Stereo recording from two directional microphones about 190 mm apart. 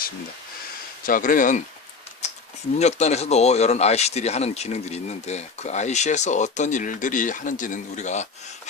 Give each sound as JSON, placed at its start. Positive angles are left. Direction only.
{"t": 1.0, "sound": "speech", "side_deg": 45}
{"t": 2.2, "sound": "a sound", "side_deg": 35}
{"t": 2.7, "sound": "speech", "side_deg": 35}